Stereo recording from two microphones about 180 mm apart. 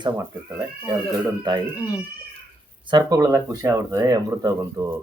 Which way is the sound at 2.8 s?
25° right (ahead or behind).